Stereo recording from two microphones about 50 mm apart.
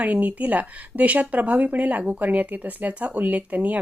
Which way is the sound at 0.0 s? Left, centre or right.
Right.